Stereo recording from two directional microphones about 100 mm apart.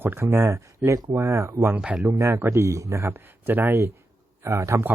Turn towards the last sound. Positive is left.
turn(degrees=-30)  # may be behind; listen again after turning